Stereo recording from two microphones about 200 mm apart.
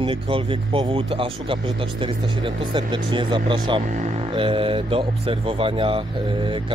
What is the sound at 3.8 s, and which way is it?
Speech, 35° right (ahead or behind).